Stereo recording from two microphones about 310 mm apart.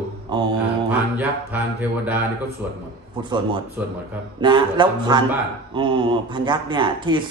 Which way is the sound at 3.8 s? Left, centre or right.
Centre.